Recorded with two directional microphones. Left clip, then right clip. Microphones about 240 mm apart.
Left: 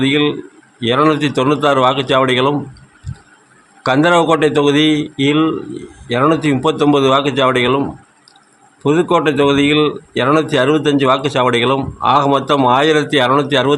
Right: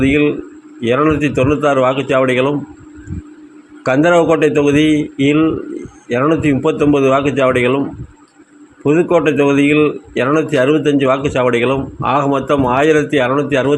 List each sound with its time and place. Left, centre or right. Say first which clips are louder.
0.0 s speech: right 1 dB; centre
3.8 s speech: right 1 dB; centre
4.9 s mantra: right 1 dB; left
5.2 s speech: even; centre
8.9 s speech: right 1 dB; centre